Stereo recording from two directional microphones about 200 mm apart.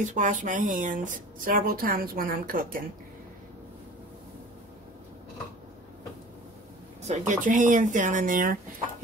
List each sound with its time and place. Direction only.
0.0 s speech: 40° right (ahead or behind)
7.0 s speech: 35° right (ahead or behind)